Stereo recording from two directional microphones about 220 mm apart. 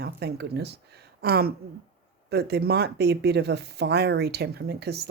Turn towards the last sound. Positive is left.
turn(degrees=-45)  # may be behind; listen again after turning